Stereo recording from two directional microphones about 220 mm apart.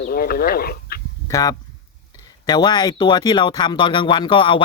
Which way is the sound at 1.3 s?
15° left (ahead or behind).